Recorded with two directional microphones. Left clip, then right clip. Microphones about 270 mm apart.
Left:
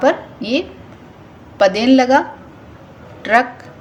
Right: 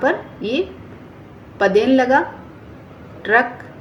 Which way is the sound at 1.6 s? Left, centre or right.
Left.